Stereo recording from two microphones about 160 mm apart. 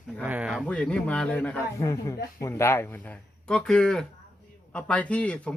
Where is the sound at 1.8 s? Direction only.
20° left (ahead or behind).